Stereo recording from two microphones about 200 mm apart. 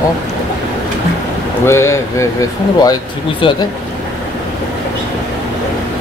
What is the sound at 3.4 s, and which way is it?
Speech, 25° left (ahead or behind).